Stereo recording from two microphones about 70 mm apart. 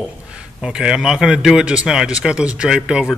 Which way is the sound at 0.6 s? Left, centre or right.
Centre.